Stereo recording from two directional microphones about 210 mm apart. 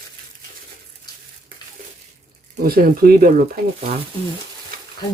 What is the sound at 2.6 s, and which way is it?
Speech, 45° right (ahead or behind).